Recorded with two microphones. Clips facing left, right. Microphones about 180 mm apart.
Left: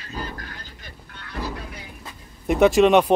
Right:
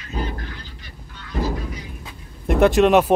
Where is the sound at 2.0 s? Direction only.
Centre (ahead or behind).